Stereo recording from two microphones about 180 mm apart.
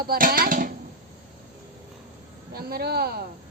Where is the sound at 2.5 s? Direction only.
60° right (ahead or behind).